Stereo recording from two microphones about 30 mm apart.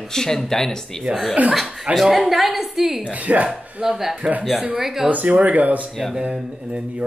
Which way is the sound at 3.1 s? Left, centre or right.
Right.